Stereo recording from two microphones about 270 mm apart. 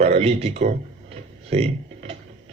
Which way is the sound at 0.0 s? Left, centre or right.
Right.